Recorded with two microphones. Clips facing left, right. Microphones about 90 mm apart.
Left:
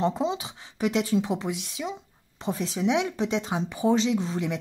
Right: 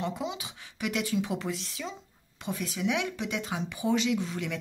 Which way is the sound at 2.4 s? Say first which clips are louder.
Left 5 dB; 30° left (ahead or behind).